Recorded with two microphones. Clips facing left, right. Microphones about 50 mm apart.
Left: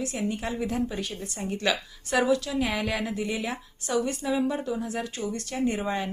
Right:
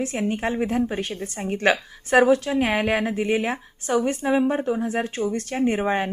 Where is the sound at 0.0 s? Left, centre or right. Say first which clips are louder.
Right 5 dB; right.